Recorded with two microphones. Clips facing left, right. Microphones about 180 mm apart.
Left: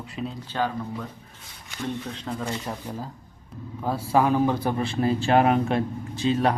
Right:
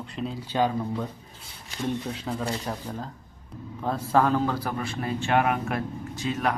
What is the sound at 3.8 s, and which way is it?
A man's voice, 10° left (ahead or behind).